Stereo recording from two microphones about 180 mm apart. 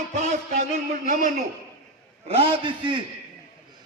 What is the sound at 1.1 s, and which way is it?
Speech, 45° right (ahead or behind).